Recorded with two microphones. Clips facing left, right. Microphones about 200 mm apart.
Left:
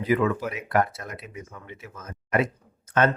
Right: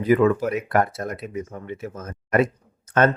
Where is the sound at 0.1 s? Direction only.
45° right (ahead or behind).